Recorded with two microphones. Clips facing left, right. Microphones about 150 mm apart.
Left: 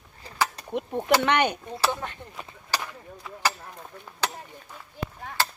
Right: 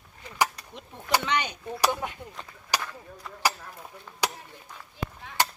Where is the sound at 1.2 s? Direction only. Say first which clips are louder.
Left 6 dB; 60° left (ahead or behind).